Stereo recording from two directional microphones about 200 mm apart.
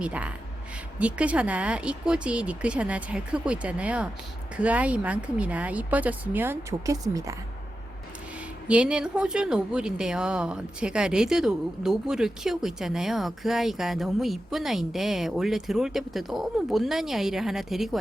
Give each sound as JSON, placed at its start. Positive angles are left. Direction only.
{"t": 0.0, "sound": "speech", "side_deg": -5}
{"t": 8.6, "sound": "speech", "side_deg": -5}